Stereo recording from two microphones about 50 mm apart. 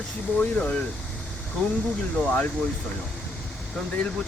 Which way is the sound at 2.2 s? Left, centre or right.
Left.